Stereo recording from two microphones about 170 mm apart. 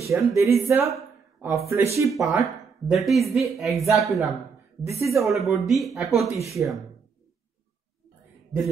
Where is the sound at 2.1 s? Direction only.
Centre (ahead or behind).